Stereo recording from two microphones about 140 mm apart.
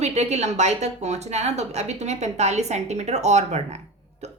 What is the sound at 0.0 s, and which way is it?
Speech, 50° right (ahead or behind).